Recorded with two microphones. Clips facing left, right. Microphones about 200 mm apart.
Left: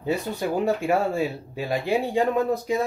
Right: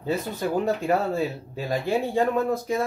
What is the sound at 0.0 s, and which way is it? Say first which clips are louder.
Speech: left 1 dB; 15° left (ahead or behind).